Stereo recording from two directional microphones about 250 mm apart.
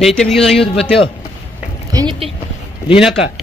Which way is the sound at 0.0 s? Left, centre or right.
Centre.